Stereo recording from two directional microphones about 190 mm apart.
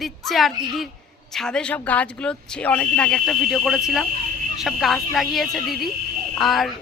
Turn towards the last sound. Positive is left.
turn(degrees=0)  # may be behind; listen again after turning